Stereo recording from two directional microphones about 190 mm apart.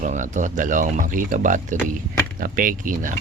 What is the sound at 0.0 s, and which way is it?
Speech, 40° right (ahead or behind).